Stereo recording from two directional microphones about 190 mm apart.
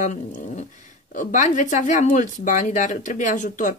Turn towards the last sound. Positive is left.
turn(degrees=40)  # may be behind; listen again after turning